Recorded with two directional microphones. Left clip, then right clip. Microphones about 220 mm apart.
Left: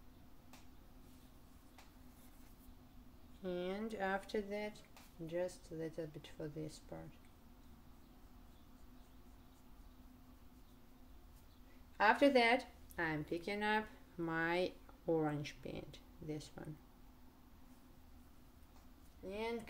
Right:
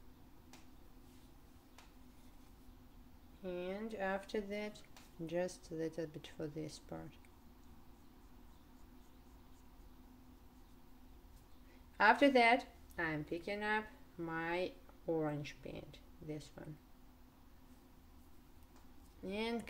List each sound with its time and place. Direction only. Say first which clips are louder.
3.4 s speech: left 1 dB; 10° left (ahead or behind); by 4.8 s 10° right (ahead or behind)
5.2 s speech: right 2 dB; 25° right (ahead or behind)
12.0 s speech: right 2 dB; 15° right (ahead or behind); by 16.6 s 10° left (ahead or behind)
19.2 s speech: right 2 dB; 30° right (ahead or behind)